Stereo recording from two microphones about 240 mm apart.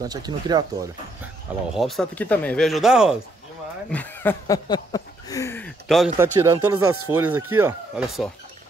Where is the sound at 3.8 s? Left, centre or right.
Centre.